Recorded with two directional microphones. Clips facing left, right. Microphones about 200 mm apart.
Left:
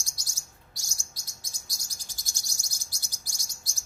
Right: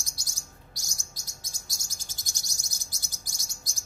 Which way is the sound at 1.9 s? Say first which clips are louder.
Right 2 dB; 25° right (ahead or behind).